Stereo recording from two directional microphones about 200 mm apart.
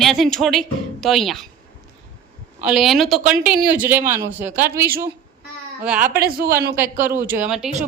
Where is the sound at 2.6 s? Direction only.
Centre (ahead or behind).